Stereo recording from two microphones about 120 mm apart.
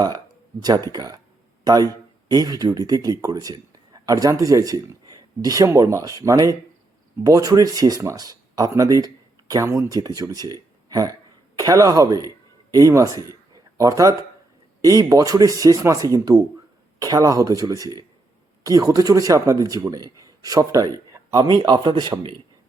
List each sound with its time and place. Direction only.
0.9 s speech: 35° right (ahead or behind)
2.3 s speech: 30° right (ahead or behind)